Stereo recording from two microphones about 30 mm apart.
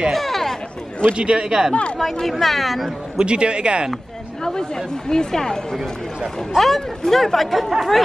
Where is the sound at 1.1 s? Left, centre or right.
Right.